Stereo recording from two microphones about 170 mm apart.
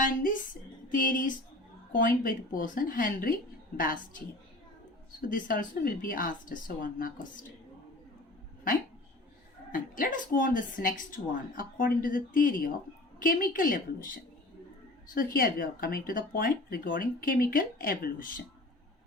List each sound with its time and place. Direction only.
0.0 s speech: 55° left (ahead or behind)
5.3 s speech: 55° left (ahead or behind)
9.7 s speech: 55° left (ahead or behind)
15.1 s speech: 55° left (ahead or behind)